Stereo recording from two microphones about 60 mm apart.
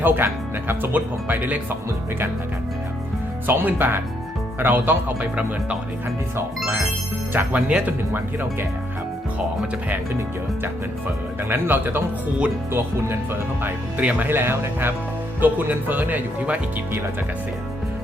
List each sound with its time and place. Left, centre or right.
0.0 s speech: right
3.4 s speech: right
7.3 s speech: right
8.1 s speech: right
11.4 s speech: right
14.0 s speech: right